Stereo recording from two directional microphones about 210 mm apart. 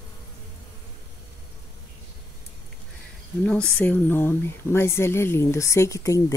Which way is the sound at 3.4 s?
5° left (ahead or behind).